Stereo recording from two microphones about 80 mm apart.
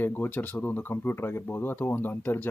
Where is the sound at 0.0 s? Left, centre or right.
Left.